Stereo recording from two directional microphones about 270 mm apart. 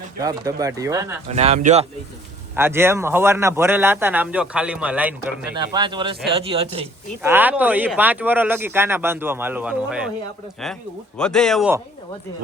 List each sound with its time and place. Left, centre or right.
0.2 s speech: centre
1.3 s speech: right
2.6 s speech: centre
5.5 s speech: centre
7.2 s speech: centre
11.2 s speech: centre